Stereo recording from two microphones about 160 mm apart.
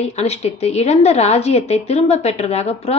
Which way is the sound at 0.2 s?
40° left (ahead or behind).